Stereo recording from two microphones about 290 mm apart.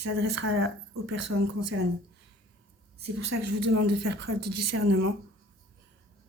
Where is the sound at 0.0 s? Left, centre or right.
Right.